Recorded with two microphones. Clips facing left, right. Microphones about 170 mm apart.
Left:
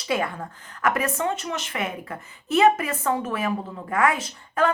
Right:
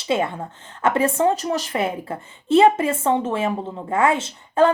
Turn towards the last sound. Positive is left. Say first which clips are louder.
# right 6 dB
turn(degrees=-25)  # may be behind; listen again after turning